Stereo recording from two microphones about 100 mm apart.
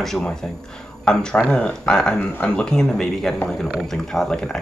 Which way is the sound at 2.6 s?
5° left (ahead or behind).